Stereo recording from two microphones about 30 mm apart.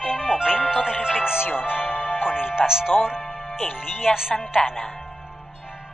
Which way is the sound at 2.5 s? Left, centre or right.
Right.